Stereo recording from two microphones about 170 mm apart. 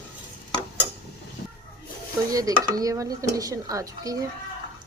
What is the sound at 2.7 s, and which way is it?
Speech, 20° right (ahead or behind).